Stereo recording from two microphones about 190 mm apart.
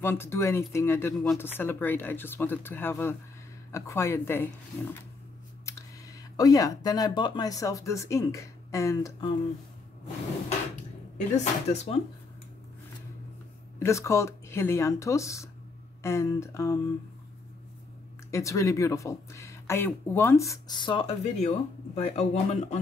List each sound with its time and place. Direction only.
0.0 s speech: 10° left (ahead or behind)
6.3 s speech: 20° left (ahead or behind)
11.3 s speech: 35° left (ahead or behind)
13.7 s speech: 15° left (ahead or behind)
18.3 s speech: 15° left (ahead or behind); by 22.8 s 35° left (ahead or behind)